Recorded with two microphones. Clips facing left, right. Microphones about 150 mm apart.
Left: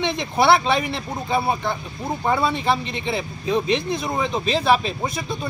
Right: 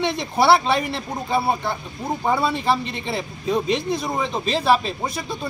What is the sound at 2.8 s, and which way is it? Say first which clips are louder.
Speech: left 1 dB; 35° right (ahead or behind).